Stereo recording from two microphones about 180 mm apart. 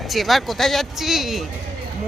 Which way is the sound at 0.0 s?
Centre (ahead or behind).